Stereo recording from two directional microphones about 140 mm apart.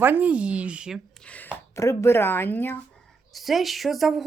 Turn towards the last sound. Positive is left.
turn(degrees=0)  # may be behind; listen again after turning